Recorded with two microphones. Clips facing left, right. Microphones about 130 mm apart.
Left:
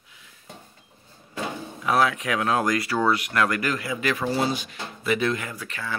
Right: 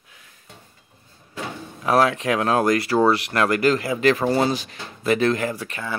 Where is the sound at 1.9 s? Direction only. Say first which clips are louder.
Right 4 dB; 40° right (ahead or behind).